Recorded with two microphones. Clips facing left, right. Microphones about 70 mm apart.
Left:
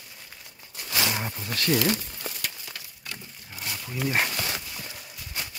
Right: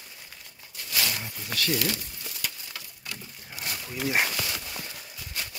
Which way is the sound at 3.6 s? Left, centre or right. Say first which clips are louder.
Left 1 dB; centre.